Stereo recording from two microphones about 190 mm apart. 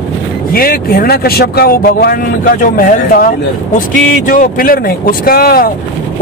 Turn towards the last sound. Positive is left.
turn(degrees=50)  # may be behind; listen again after turning